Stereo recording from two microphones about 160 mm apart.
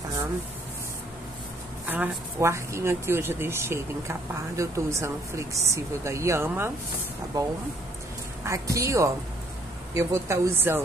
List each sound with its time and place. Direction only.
1.9 s speech: 15° right (ahead or behind)
8.5 s speech: 20° right (ahead or behind)